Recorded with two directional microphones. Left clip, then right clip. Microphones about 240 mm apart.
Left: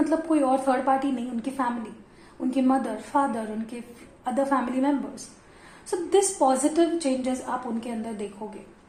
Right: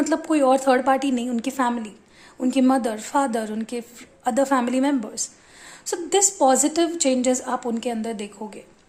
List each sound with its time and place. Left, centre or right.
0.0 s a woman's voice: right